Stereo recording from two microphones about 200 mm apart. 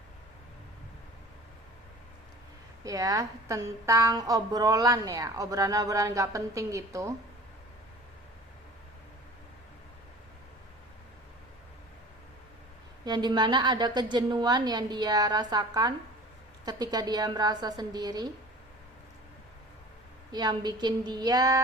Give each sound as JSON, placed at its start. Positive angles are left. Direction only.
{"t": 2.8, "sound": "a woman's voice", "side_deg": -15}
{"t": 13.1, "sound": "a woman's voice", "side_deg": -20}
{"t": 20.3, "sound": "a woman's voice", "side_deg": -20}